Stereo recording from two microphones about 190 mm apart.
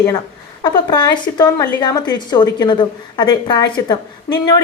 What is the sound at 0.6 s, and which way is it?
A woman's voice, 20° left (ahead or behind).